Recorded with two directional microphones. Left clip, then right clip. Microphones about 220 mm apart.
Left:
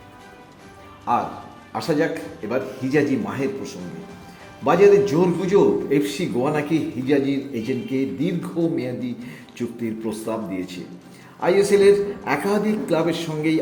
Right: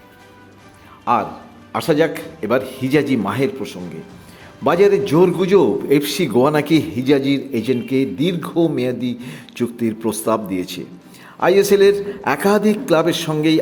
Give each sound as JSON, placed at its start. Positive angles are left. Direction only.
{"t": 1.7, "sound": "a man's voice", "side_deg": -20}
{"t": 4.6, "sound": "a man's voice", "side_deg": -20}